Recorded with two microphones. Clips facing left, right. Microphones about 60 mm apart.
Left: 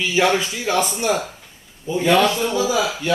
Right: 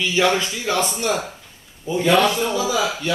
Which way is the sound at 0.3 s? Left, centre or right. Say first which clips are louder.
Left 1 dB; centre.